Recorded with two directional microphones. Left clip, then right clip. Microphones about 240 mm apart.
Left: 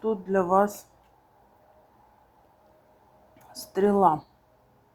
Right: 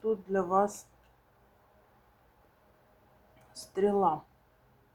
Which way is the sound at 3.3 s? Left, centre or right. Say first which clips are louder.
Left 5 dB; left.